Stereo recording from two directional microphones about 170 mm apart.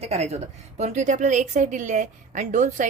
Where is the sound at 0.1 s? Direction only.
40° right (ahead or behind).